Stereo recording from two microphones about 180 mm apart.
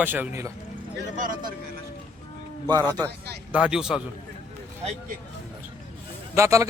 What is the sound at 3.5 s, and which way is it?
Speech, 5° right (ahead or behind).